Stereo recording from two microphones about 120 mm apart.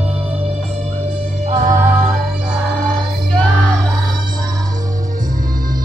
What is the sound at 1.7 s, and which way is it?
Music, 15° right (ahead or behind).